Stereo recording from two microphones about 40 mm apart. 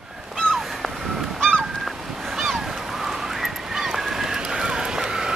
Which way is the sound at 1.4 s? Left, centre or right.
Centre.